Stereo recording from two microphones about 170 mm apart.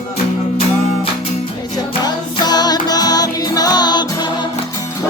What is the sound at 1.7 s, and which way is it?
Music, 25° left (ahead or behind).